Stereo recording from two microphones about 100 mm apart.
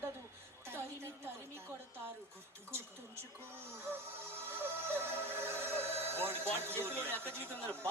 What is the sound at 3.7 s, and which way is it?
Music, 25° right (ahead or behind).